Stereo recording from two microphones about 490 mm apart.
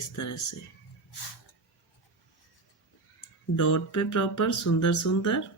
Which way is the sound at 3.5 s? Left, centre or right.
Left.